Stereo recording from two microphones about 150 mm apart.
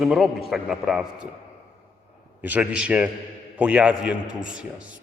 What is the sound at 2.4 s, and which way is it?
A man's voice, 10° right (ahead or behind).